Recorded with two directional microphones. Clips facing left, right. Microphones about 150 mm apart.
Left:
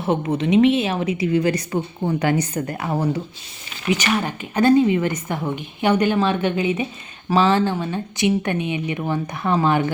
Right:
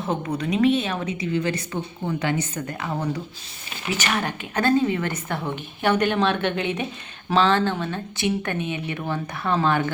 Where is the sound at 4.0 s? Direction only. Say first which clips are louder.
Left 3 dB; 10° left (ahead or behind).